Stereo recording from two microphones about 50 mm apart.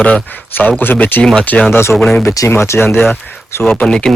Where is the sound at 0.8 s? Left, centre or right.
Left.